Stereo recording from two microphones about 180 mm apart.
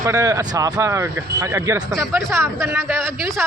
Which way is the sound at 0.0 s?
15° right (ahead or behind).